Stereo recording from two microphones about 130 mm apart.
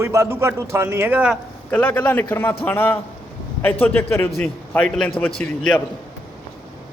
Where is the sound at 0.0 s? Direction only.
20° right (ahead or behind).